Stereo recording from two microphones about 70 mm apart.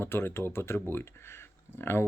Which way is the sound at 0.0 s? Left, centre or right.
Left.